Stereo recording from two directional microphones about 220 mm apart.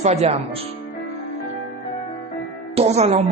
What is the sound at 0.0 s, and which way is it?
Speech, 30° right (ahead or behind).